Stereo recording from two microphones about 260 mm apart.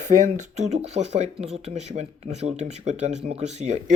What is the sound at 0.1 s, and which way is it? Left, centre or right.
Speech, right.